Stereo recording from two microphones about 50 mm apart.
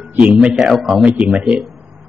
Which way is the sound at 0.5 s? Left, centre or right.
Centre.